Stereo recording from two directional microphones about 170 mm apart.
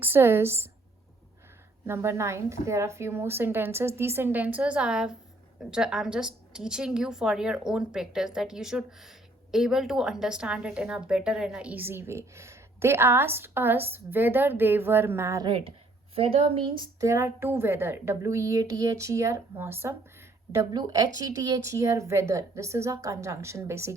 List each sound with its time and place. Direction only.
0.0 s a woman's voice: 15° right (ahead or behind)
1.9 s a woman's voice: 15° right (ahead or behind)
15.4 s speech: 35° right (ahead or behind)
17.0 s a woman's voice: 15° right (ahead or behind)